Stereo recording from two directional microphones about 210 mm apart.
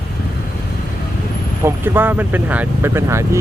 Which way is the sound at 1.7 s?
10° right (ahead or behind).